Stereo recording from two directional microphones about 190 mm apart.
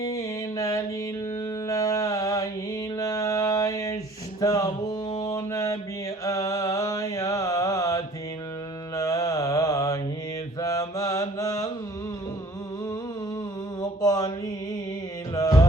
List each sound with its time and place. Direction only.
0.1 s mantra: 15° left (ahead or behind)
14.0 s mantra: 15° left (ahead or behind)
15.4 s music: 15° left (ahead or behind)